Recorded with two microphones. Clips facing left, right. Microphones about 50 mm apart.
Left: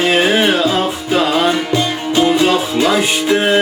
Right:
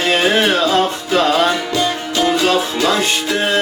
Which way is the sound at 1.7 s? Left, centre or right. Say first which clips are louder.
Left 2 dB; left.